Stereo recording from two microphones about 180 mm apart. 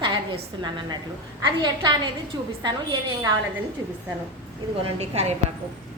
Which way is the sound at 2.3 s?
25° right (ahead or behind).